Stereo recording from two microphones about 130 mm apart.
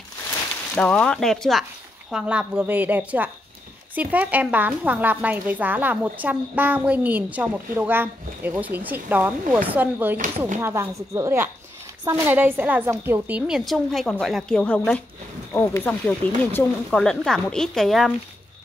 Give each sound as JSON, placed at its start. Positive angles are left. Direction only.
{"t": 0.7, "sound": "a woman's voice", "side_deg": 10}
{"t": 13.5, "sound": "speech", "side_deg": 0}